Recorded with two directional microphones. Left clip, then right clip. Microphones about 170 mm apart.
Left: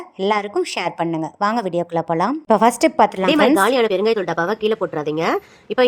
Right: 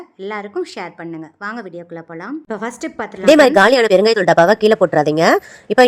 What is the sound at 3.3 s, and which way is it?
Speech, 30° right (ahead or behind).